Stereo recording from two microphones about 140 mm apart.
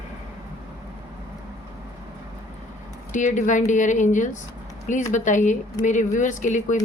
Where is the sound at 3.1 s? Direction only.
60° left (ahead or behind).